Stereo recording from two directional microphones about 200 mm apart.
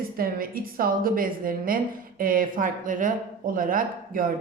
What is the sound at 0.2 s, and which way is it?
A woman's voice, 45° right (ahead or behind).